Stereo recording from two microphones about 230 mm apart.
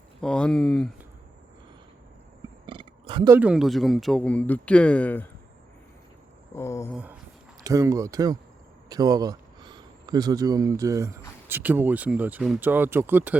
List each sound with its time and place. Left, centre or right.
0.2 s speech: centre
2.6 s wild animals: right
3.3 s speech: centre
6.5 s a sound: centre
6.9 s speech: centre